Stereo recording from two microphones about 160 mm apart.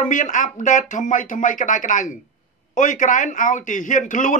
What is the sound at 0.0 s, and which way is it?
A man's voice, 50° left (ahead or behind).